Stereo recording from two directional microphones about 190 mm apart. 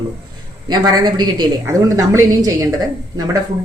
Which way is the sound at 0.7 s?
20° right (ahead or behind).